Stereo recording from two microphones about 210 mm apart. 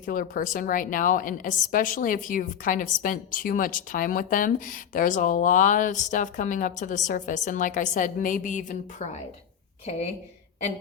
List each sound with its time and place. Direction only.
0.0 s a woman's voice: 40° left (ahead or behind)